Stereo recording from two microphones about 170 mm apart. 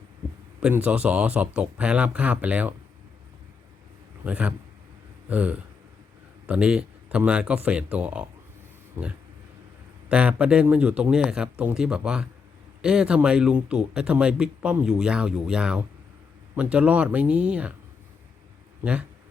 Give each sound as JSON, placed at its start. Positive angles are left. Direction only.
{"t": 0.6, "sound": "a man's voice", "side_deg": -10}
{"t": 4.2, "sound": "a man's voice", "side_deg": -10}
{"t": 18.8, "sound": "speech", "side_deg": -10}